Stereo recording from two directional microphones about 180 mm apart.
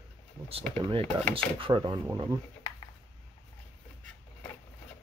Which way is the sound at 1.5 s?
25° right (ahead or behind).